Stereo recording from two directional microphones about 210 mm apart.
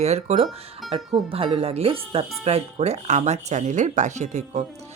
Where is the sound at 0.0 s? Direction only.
30° right (ahead or behind).